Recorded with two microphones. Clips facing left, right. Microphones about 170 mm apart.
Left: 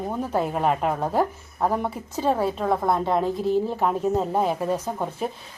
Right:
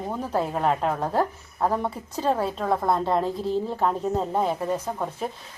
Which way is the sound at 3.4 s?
25° right (ahead or behind).